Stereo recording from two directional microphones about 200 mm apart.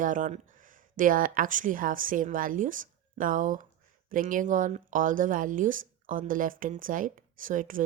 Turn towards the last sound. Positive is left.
turn(degrees=-40)  # may be behind; listen again after turning